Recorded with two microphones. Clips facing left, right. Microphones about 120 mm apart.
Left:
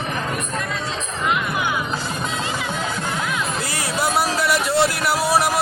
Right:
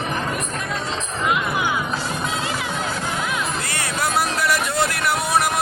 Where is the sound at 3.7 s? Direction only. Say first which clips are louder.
Left 2 dB; 25° left (ahead or behind).